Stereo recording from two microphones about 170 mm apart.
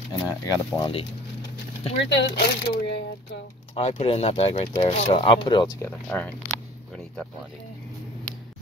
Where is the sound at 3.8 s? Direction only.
40° left (ahead or behind).